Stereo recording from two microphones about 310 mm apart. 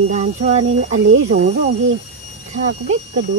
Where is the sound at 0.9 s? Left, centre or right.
Right.